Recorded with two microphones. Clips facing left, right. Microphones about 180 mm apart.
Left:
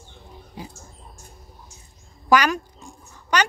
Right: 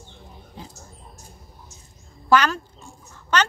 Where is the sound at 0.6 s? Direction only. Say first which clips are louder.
Left 3 dB; 10° left (ahead or behind).